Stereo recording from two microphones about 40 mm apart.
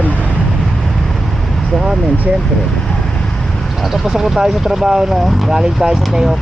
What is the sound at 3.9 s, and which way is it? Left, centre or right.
Speech, centre.